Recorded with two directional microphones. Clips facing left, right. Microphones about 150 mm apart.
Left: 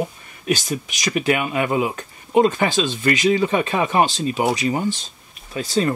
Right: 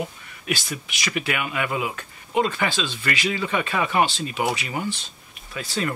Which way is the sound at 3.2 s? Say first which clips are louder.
Left 7 dB; 30° left (ahead or behind).